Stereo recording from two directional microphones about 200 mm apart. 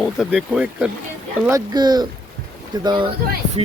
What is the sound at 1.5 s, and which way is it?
Speech, 20° right (ahead or behind).